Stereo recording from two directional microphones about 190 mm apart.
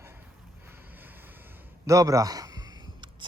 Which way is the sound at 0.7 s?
10° right (ahead or behind).